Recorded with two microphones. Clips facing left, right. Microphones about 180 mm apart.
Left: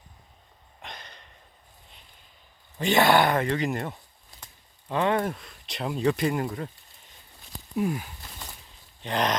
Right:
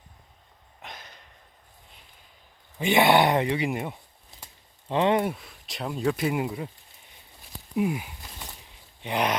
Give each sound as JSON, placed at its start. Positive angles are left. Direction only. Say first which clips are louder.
{"t": 0.8, "sound": "sniff", "louder": "even", "side_deg": -5}
{"t": 2.7, "sound": "speech", "louder": "right 1 dB", "side_deg": -10}
{"t": 4.9, "sound": "speech", "louder": "right 2 dB", "side_deg": -20}
{"t": 5.3, "sound": "speech", "louder": "even", "side_deg": -5}
{"t": 7.8, "sound": "a sound", "louder": "right 1 dB", "side_deg": -15}
{"t": 9.0, "sound": "speech", "louder": "even", "side_deg": -10}